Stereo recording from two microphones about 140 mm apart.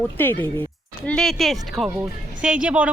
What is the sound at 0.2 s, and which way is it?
Speech, 15° left (ahead or behind).